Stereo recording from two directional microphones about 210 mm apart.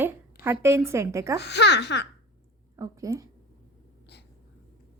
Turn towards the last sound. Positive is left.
turn(degrees=-15)  # may be behind; listen again after turning